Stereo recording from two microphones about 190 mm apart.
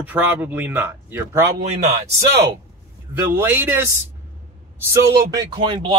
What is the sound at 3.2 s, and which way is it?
Speech, 10° right (ahead or behind).